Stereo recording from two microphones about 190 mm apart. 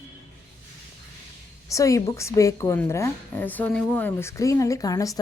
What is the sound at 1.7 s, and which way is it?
A woman's voice, 15° left (ahead or behind).